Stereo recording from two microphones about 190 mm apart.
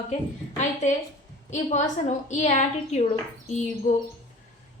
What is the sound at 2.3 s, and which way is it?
A woman's voice, 40° left (ahead or behind).